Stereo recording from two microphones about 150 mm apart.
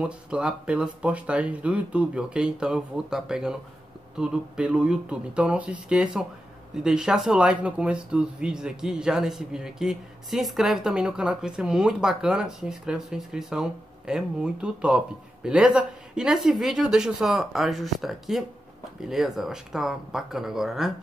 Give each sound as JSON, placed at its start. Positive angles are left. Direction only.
{"t": 0.0, "sound": "speech", "side_deg": -10}